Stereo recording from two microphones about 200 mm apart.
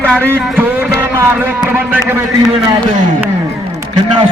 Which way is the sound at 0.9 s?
10° right (ahead or behind).